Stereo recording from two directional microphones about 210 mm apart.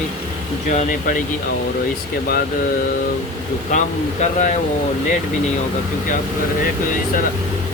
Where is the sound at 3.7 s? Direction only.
35° left (ahead or behind).